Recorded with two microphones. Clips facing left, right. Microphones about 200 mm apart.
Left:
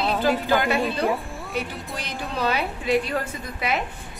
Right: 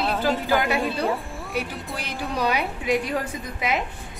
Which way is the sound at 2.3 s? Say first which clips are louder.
Even; 15° right (ahead or behind).